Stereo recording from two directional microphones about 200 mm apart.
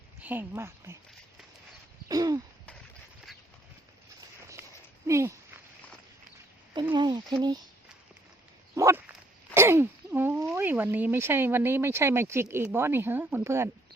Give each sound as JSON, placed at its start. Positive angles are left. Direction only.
{"t": 0.2, "sound": "speech", "side_deg": -10}
{"t": 2.0, "sound": "speech", "side_deg": -20}
{"t": 5.0, "sound": "a sound", "side_deg": -15}
{"t": 6.9, "sound": "speech", "side_deg": -20}
{"t": 8.7, "sound": "dog", "side_deg": -15}
{"t": 9.6, "sound": "speech", "side_deg": -10}